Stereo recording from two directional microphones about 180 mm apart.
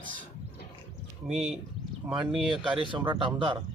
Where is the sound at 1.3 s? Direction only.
35° right (ahead or behind).